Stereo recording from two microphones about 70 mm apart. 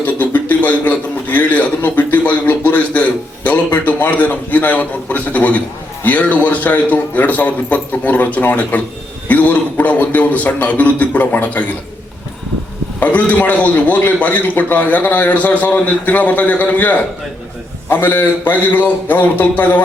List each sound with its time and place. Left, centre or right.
0.0 s a sound: left
9.3 s a man's voice: left
13.0 s a man's voice: left